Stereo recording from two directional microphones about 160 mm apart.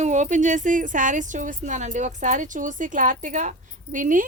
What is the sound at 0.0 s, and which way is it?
Speech, 50° right (ahead or behind).